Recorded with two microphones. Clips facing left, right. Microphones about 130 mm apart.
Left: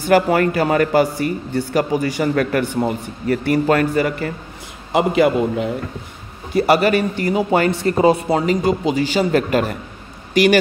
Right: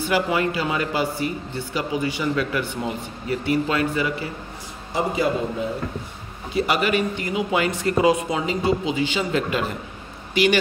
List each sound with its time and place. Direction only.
0.0 s speech: 50° left (ahead or behind)
4.9 s a man's voice: 70° left (ahead or behind)
6.5 s a man's voice: 40° left (ahead or behind)
7.7 s a man's voice: 30° left (ahead or behind)